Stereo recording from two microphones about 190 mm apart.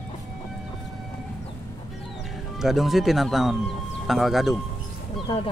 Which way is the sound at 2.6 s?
Centre (ahead or behind).